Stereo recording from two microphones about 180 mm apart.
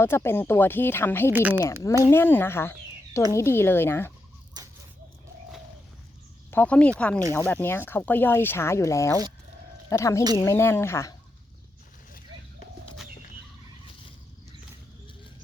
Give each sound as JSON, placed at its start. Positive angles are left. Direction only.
{"t": 0.0, "sound": "speech", "side_deg": 15}
{"t": 1.3, "sound": "a woman's voice", "side_deg": -10}
{"t": 1.6, "sound": "speech", "side_deg": 20}
{"t": 4.6, "sound": "a sound", "side_deg": -20}
{"t": 6.5, "sound": "speech", "side_deg": 10}